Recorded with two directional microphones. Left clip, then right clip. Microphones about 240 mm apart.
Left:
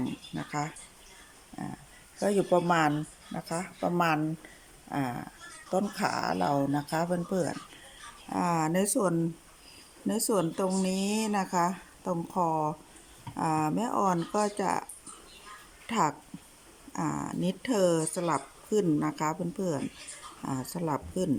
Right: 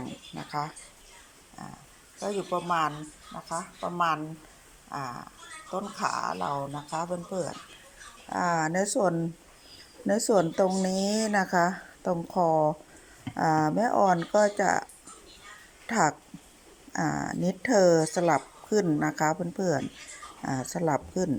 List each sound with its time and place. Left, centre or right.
0.3 s speech: centre
2.1 s speech: left; by 14.8 s centre
15.9 s speech: centre